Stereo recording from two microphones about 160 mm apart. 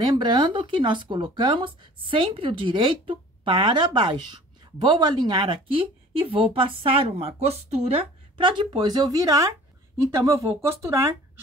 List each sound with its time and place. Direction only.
0.0 s speech: 25° right (ahead or behind)